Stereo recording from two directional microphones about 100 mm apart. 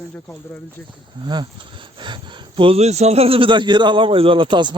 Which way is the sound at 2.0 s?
55° right (ahead or behind).